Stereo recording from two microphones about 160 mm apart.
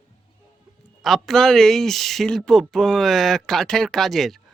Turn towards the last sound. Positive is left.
turn(degrees=0)  # may be behind; listen again after turning